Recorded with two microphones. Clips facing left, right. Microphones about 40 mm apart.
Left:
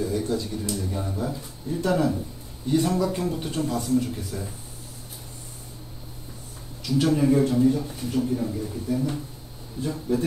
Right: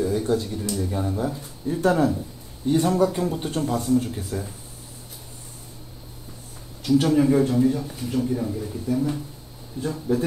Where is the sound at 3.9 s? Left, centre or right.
Right.